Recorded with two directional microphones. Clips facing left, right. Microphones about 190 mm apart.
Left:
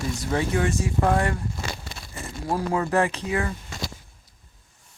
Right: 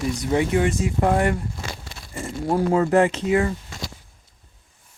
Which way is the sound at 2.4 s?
25° right (ahead or behind).